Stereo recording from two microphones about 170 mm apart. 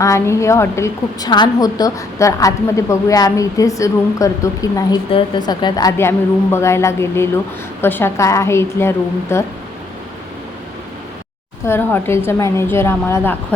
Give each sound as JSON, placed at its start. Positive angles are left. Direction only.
{"t": 0.0, "sound": "a woman's voice", "side_deg": 15}
{"t": 11.6, "sound": "a woman's voice", "side_deg": 15}